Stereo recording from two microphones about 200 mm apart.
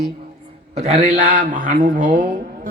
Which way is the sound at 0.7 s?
30° right (ahead or behind).